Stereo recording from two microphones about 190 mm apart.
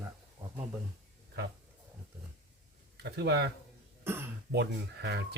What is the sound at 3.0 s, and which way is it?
Speech, 60° right (ahead or behind).